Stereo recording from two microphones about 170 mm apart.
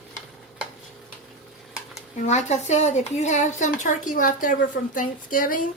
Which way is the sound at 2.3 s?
40° left (ahead or behind).